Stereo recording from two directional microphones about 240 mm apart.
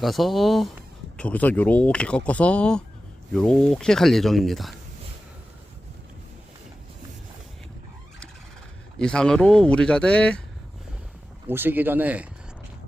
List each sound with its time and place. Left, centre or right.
0.0 s speech: centre
9.0 s speech: centre
11.4 s speech: centre